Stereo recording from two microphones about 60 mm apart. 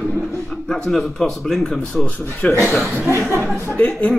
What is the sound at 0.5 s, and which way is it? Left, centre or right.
A man's voice, centre.